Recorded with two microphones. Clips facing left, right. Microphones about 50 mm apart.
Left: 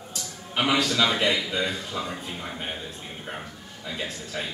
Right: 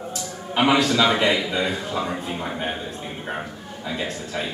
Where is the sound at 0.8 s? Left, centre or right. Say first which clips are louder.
Right 4 dB; right.